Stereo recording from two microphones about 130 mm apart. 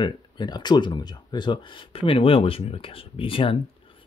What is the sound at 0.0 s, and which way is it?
Speech, 35° left (ahead or behind).